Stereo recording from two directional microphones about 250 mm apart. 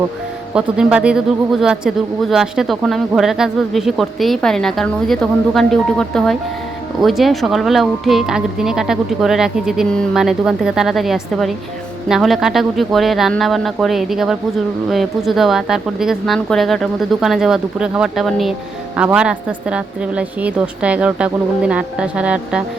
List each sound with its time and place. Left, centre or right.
0.5 s a woman's voice: centre